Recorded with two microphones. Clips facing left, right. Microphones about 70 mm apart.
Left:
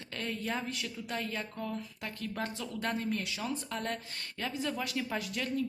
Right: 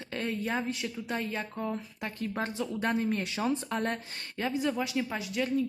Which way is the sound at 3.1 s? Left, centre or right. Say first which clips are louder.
Right 5 dB; right.